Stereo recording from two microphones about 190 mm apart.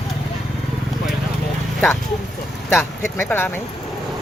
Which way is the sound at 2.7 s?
10° left (ahead or behind).